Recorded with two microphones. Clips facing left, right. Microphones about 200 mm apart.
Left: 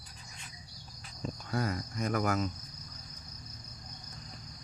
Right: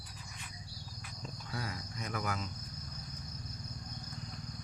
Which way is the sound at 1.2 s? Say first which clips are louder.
Left 9 dB; 50° left (ahead or behind).